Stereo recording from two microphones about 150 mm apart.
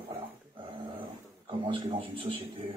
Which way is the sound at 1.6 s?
35° right (ahead or behind).